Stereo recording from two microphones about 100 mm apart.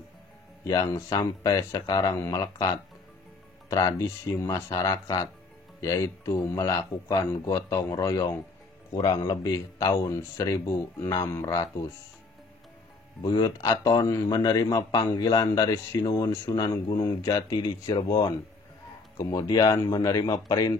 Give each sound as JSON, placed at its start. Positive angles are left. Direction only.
{"t": 0.7, "sound": "a man's voice", "side_deg": 35}
{"t": 3.7, "sound": "a man's voice", "side_deg": 35}
{"t": 8.9, "sound": "speech", "side_deg": 50}
{"t": 9.2, "sound": "a man's voice", "side_deg": 35}
{"t": 13.2, "sound": "a man's voice", "side_deg": 45}